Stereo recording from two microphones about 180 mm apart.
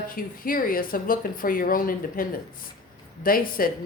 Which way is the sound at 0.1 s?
50° left (ahead or behind).